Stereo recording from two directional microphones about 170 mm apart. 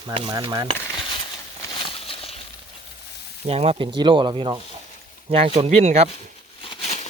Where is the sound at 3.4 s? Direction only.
35° right (ahead or behind).